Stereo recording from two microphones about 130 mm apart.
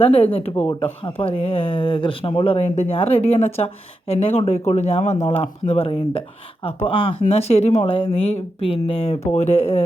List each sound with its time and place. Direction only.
0.0 s speech: 50° left (ahead or behind)
2.6 s speech: 55° left (ahead or behind)